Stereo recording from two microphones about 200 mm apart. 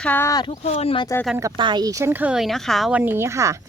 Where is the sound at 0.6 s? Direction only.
30° left (ahead or behind).